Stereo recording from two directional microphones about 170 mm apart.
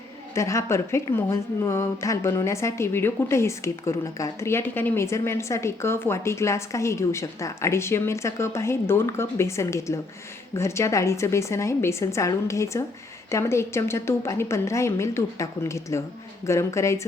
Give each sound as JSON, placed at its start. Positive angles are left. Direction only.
{"t": 0.3, "sound": "a woman's voice", "side_deg": 15}